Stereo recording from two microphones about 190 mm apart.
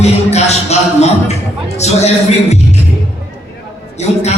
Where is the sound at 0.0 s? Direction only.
35° left (ahead or behind).